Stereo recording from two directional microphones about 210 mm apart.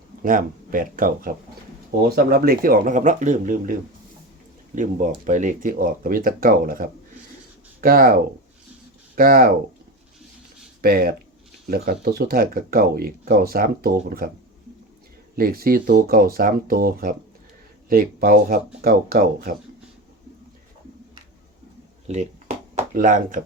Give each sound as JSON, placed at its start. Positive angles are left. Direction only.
{"t": 0.2, "sound": "speech", "side_deg": -40}
{"t": 10.8, "sound": "speech", "side_deg": -45}
{"t": 15.4, "sound": "speech", "side_deg": -45}
{"t": 22.0, "sound": "a sound", "side_deg": -35}